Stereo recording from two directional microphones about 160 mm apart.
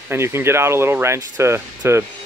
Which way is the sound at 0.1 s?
15° right (ahead or behind).